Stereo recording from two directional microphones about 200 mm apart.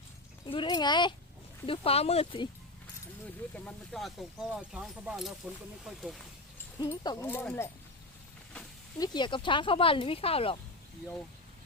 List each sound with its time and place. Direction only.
0.4 s speech: 25° left (ahead or behind)
3.5 s speech: 5° left (ahead or behind)
6.7 s speech: 20° left (ahead or behind)
9.0 s speech: 20° left (ahead or behind)